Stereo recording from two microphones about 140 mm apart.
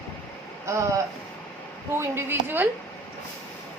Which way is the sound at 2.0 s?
15° right (ahead or behind).